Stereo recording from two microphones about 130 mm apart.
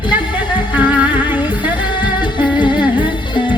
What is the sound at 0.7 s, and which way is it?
Music, 10° right (ahead or behind).